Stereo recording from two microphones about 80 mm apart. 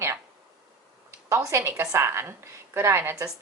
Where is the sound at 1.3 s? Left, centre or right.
Right.